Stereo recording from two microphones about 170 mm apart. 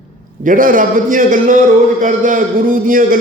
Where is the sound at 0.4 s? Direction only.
55° right (ahead or behind).